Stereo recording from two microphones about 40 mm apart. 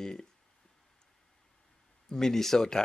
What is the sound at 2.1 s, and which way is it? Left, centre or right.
Speech, centre.